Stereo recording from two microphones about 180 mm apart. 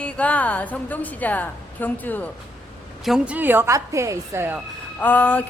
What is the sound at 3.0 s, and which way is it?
A woman's voice, 5° right (ahead or behind).